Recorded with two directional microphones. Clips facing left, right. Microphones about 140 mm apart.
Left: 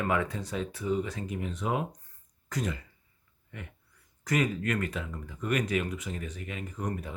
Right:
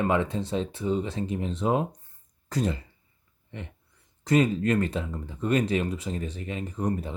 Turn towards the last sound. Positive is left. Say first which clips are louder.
# right 6 dB
turn(degrees=-30)  # may be behind; listen again after turning